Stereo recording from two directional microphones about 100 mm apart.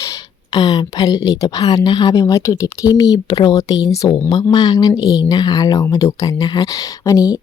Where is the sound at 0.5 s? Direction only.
40° left (ahead or behind).